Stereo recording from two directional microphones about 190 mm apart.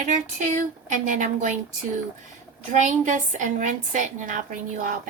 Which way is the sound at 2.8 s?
40° right (ahead or behind).